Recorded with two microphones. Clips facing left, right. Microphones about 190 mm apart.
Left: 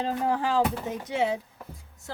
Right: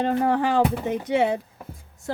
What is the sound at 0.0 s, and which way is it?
A woman's voice, 65° right (ahead or behind).